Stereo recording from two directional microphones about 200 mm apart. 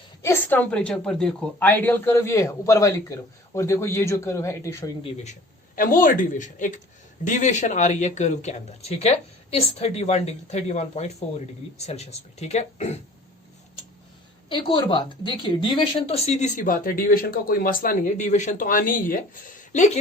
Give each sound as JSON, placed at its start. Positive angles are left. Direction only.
{"t": 0.2, "sound": "speech", "side_deg": 10}
{"t": 5.1, "sound": "speech", "side_deg": 35}
{"t": 14.5, "sound": "speech", "side_deg": 25}